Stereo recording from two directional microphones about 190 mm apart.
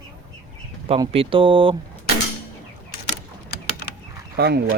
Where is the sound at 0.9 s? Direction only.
30° right (ahead or behind).